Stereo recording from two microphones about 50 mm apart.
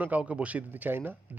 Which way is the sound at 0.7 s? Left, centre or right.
Right.